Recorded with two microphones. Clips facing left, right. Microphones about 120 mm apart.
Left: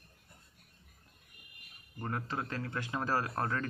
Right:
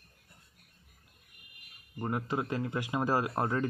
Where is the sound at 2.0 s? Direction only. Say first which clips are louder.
Right 5 dB; 15° right (ahead or behind).